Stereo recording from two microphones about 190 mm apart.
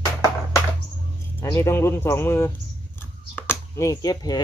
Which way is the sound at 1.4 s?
15° left (ahead or behind).